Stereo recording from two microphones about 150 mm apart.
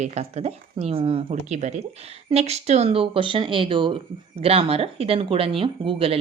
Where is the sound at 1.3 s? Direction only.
50° right (ahead or behind).